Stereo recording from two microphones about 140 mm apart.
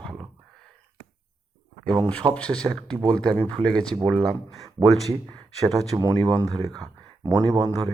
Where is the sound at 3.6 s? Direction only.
5° left (ahead or behind).